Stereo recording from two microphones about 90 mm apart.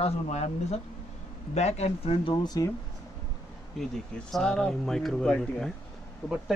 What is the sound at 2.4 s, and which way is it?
Speech, 45° left (ahead or behind).